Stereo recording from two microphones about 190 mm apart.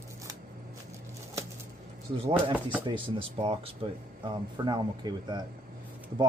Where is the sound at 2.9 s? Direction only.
25° right (ahead or behind).